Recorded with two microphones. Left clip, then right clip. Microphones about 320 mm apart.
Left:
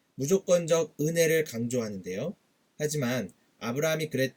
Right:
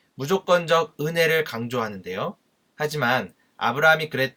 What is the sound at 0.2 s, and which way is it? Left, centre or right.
Speech, centre.